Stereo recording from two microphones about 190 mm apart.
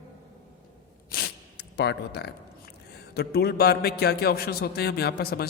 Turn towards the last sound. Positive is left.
turn(degrees=55)  # may be behind; listen again after turning